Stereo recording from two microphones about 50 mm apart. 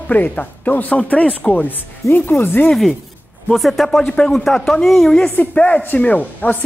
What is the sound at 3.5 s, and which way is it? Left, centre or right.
Speech, centre.